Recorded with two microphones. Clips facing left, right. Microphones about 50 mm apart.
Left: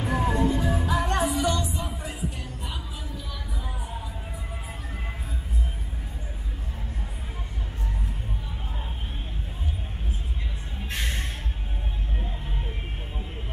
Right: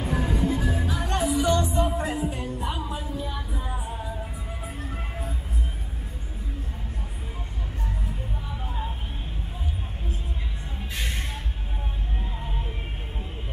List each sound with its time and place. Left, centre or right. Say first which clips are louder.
0.0 s music: left 2 dB; left
1.5 s music: right 6 dB; right
2.0 s music: right 6 dB; right
2.6 s music: right 7 dB; right